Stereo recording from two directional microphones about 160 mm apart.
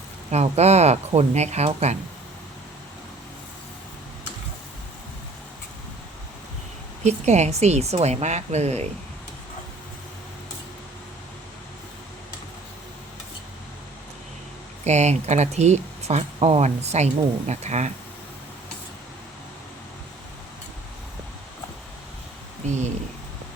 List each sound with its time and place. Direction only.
0.3 s speech: 45° right (ahead or behind)
7.0 s speech: 45° right (ahead or behind)
14.8 s speech: 45° right (ahead or behind)
22.6 s speech: 45° right (ahead or behind)